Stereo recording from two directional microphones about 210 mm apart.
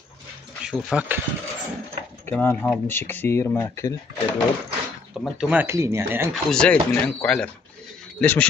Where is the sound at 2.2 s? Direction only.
10° left (ahead or behind).